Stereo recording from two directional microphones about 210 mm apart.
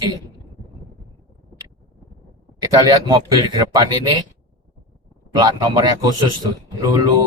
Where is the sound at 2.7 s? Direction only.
15° right (ahead or behind).